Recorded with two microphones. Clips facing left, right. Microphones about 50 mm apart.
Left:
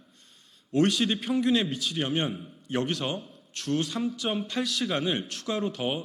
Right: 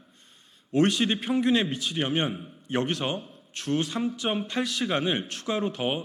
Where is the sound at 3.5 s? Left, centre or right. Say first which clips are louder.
Right 1 dB; centre.